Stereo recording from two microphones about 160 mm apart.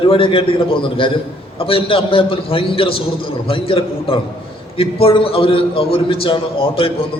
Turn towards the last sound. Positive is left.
turn(degrees=35)  # may be behind; listen again after turning